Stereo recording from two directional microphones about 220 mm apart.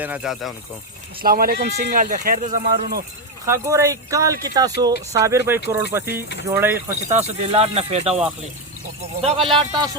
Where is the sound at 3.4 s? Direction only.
15° right (ahead or behind).